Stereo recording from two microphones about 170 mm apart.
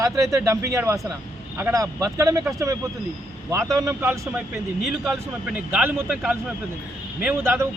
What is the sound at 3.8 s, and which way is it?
A man's voice, 15° right (ahead or behind).